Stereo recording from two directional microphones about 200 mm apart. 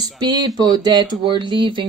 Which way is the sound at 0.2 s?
20° right (ahead or behind).